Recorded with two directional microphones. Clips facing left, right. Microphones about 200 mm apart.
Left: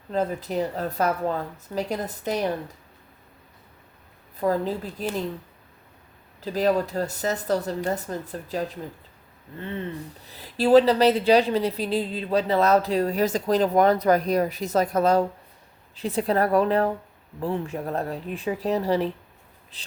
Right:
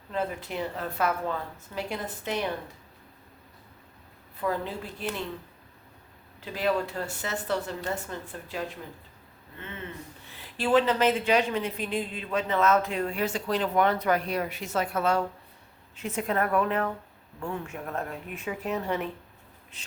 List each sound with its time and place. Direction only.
0.1 s a woman's voice: 40° left (ahead or behind)
4.4 s a woman's voice: 40° left (ahead or behind)
6.4 s a woman's voice: 40° left (ahead or behind)